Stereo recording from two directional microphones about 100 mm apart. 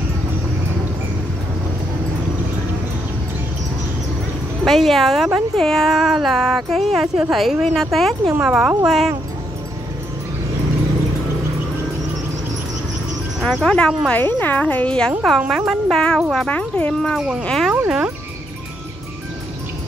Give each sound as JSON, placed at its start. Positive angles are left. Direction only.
{"t": 4.6, "sound": "a woman's voice", "side_deg": 0}
{"t": 13.4, "sound": "a woman's voice", "side_deg": 0}
{"t": 16.4, "sound": "speech", "side_deg": 15}
{"t": 17.0, "sound": "a woman's voice", "side_deg": 0}
{"t": 17.6, "sound": "speech", "side_deg": -5}